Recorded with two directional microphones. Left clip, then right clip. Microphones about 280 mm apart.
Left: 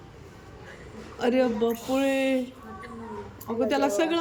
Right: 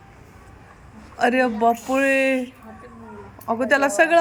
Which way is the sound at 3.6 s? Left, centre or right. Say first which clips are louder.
Right 6 dB; centre.